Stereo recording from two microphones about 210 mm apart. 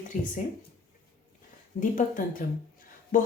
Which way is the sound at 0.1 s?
40° left (ahead or behind).